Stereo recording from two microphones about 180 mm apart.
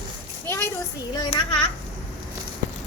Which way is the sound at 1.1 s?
25° left (ahead or behind).